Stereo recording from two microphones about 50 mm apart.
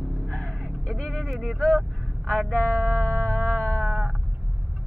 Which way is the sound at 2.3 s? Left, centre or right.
Centre.